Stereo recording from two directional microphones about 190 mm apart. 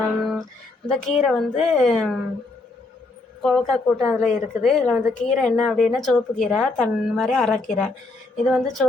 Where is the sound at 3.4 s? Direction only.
Centre (ahead or behind).